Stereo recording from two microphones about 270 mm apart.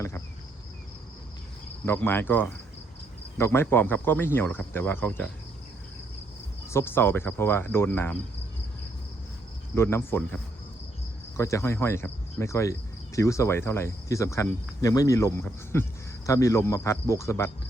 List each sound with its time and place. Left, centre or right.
1.8 s cricket: centre
6.7 s cricket: centre
9.7 s cricket: centre